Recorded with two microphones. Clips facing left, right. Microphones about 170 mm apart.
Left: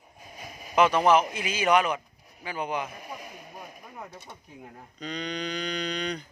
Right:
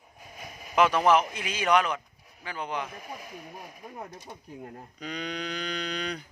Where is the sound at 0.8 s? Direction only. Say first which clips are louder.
Left 1 dB; centre (ahead or behind).